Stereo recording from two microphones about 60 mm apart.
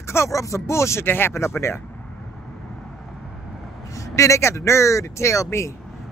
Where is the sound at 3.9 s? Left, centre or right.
Left.